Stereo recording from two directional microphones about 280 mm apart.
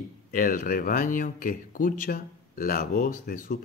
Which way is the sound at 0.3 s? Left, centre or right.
Left.